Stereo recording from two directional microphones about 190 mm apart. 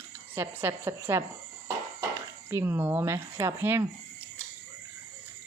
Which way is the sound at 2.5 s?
10° right (ahead or behind).